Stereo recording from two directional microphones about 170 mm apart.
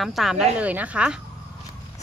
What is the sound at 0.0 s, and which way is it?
Speech, centre (ahead or behind).